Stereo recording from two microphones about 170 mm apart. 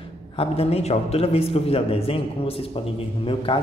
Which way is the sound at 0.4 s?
35° left (ahead or behind).